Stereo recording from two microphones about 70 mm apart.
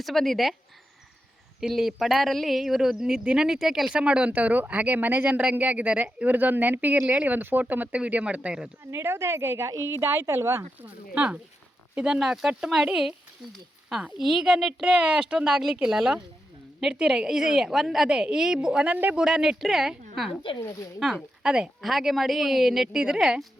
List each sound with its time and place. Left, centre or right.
0.0 s speech: centre
1.6 s speech: centre
8.9 s a woman's voice: right
10.8 s speech: right; by 20.3 s centre
20.7 s speech: left
21.0 s speech: centre